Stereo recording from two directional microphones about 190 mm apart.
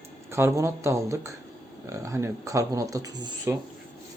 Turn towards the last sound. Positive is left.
turn(degrees=-20)  # may be behind; listen again after turning